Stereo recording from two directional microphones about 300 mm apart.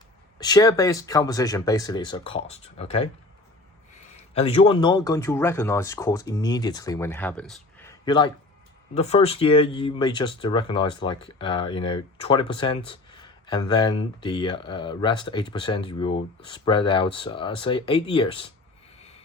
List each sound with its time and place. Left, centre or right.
0.3 s speech: centre
4.2 s speech: left